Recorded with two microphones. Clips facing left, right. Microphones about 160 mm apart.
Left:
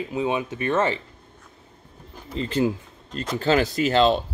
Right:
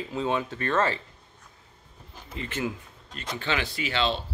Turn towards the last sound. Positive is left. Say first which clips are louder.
# left 9 dB
turn(degrees=45)  # may be behind; listen again after turning